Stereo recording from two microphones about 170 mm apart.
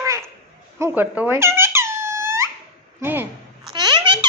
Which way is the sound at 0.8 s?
10° right (ahead or behind).